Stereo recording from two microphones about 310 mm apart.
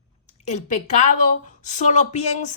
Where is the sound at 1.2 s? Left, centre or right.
Left.